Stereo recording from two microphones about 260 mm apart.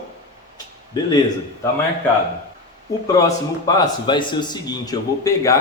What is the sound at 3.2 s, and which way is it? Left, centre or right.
A man's voice, centre.